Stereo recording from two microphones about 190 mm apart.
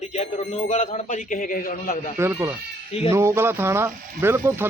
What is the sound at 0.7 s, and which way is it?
A man's voice, 40° left (ahead or behind).